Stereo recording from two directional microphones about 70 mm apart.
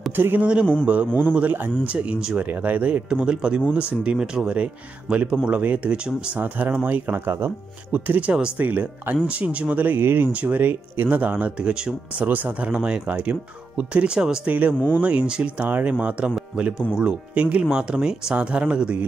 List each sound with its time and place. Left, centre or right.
0.1 s speech: right
0.4 s speech: centre
7.2 s speech: right; by 12.3 s centre
12.3 s speech: right
17.6 s speech: centre